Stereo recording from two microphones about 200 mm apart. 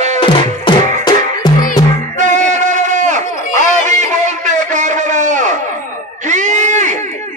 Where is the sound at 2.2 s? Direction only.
40° right (ahead or behind).